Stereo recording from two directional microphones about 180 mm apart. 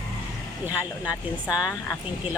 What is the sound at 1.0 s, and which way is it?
Speech, 5° right (ahead or behind).